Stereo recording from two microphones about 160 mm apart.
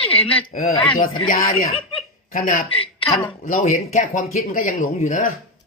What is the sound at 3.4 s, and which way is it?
Speech, 50° left (ahead or behind).